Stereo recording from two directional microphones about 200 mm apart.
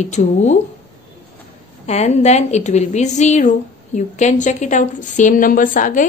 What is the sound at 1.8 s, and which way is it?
A woman's voice, 35° left (ahead or behind).